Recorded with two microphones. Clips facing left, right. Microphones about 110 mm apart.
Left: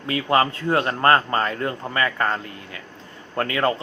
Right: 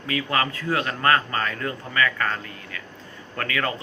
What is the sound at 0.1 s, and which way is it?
Speech, 30° left (ahead or behind).